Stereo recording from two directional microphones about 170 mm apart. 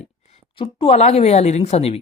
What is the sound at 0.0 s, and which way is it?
A woman's voice, 35° left (ahead or behind).